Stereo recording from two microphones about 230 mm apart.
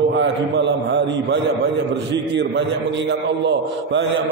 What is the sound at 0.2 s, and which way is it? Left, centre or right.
A man's voice, right.